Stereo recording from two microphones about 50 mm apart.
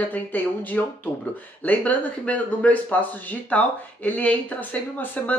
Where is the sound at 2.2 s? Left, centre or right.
Left.